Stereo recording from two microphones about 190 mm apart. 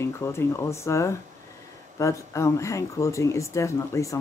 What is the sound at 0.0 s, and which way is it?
Speech, 15° left (ahead or behind).